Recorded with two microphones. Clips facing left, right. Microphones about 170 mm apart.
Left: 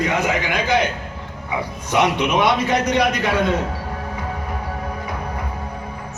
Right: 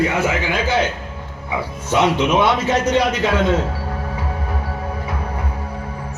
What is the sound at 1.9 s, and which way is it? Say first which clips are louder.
A man's voice: right 2 dB; 15° left (ahead or behind).